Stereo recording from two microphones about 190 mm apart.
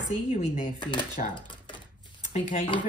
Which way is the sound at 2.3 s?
40° left (ahead or behind).